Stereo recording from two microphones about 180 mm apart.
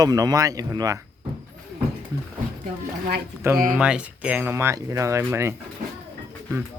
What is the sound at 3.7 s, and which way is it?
Speech, 5° right (ahead or behind).